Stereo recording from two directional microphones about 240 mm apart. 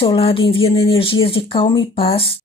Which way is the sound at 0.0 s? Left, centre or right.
Left.